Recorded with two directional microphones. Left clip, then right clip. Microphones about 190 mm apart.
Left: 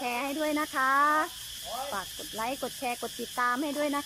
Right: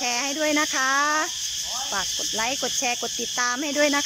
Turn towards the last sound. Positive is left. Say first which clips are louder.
# right 8 dB
turn(degrees=-5)  # may be behind; listen again after turning